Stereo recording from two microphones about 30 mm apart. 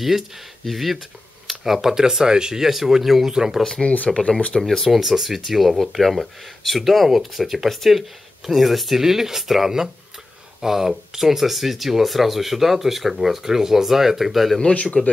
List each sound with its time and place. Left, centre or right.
0.7 s speech: centre
1.6 s speech: centre
3.3 s speech: centre
4.2 s speech: left
4.6 s speech: centre
5.1 s speech: centre
13.4 s speech: centre
14.7 s speech: left